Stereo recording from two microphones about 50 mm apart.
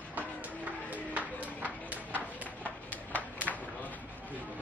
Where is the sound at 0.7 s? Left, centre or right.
Right.